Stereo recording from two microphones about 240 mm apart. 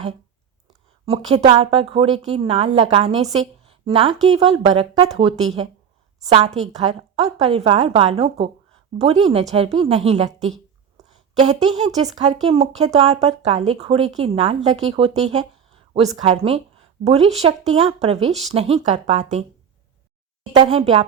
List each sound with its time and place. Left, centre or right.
0.7 s a woman's voice: right
20.5 s a woman's voice: right